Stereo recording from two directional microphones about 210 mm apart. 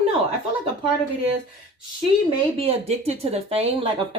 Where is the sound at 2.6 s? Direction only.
30° right (ahead or behind).